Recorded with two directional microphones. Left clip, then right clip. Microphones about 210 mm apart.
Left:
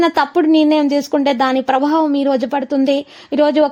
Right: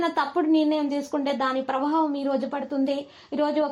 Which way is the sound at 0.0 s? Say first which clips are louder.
Left 10 dB; 50° left (ahead or behind).